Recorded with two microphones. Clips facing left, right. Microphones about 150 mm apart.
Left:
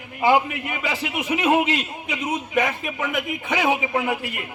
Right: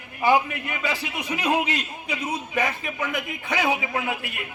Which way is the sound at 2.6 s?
Centre (ahead or behind).